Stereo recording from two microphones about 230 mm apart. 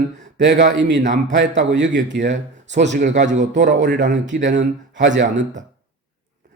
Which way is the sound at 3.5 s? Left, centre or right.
Right.